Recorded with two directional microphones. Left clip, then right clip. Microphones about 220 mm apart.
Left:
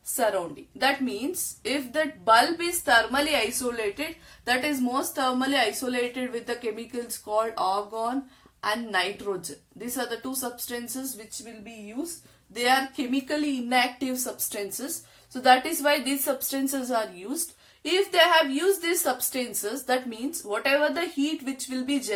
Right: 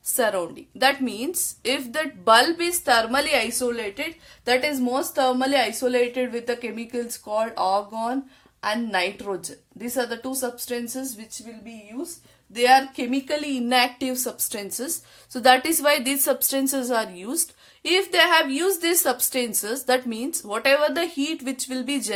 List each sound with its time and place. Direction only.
0.8 s a woman's voice: 45° right (ahead or behind)
12.5 s a woman's voice: 45° right (ahead or behind)